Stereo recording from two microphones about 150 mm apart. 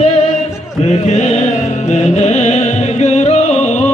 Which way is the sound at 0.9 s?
50° left (ahead or behind).